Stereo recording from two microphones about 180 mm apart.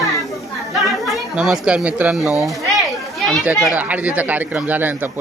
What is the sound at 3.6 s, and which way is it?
Speech, 5° right (ahead or behind).